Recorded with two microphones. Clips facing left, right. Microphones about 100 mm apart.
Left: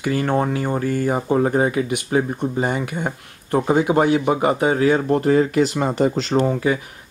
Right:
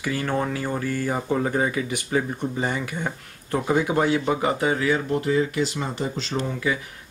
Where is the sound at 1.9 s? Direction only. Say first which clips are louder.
Left 5 dB; 60° left (ahead or behind).